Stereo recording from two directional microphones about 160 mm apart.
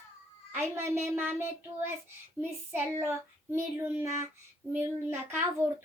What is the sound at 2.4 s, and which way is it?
Child singing, 15° right (ahead or behind).